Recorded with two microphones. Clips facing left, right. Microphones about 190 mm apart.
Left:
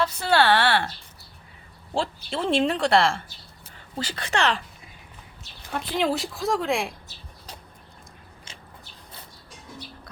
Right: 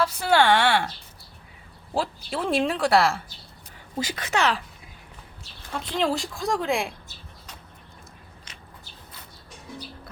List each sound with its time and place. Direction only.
0.0 s speech: 10° right (ahead or behind)
1.9 s speech: 5° right (ahead or behind)
5.7 s speech: 5° left (ahead or behind)
8.5 s biting: 25° left (ahead or behind)